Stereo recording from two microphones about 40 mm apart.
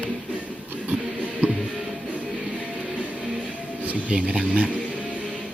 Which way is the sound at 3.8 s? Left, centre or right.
Right.